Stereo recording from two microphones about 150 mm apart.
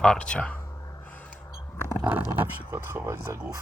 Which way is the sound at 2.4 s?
20° right (ahead or behind).